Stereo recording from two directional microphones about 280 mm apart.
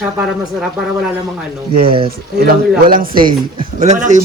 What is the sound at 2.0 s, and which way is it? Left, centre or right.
Speech, right.